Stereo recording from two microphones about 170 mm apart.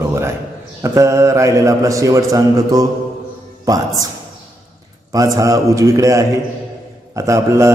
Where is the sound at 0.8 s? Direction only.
15° right (ahead or behind).